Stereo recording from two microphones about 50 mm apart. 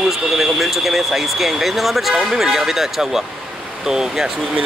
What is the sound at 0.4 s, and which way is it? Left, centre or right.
Speech, centre.